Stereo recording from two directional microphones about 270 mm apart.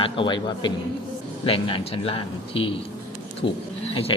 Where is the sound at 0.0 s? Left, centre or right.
Centre.